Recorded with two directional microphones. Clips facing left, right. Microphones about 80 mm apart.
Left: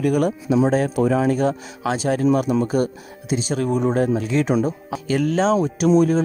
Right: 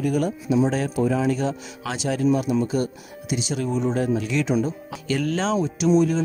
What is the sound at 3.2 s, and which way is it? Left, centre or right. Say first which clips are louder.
Speech: left 4 dB; left.